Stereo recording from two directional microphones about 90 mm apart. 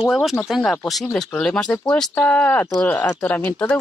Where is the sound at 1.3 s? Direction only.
15° left (ahead or behind).